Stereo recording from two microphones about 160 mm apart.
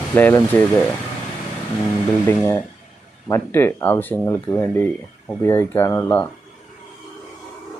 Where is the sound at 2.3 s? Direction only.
10° left (ahead or behind).